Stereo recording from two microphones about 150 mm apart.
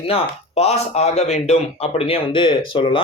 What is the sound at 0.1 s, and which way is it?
Speech, 45° left (ahead or behind).